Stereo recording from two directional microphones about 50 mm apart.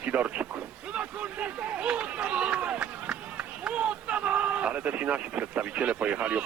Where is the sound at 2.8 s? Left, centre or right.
Centre.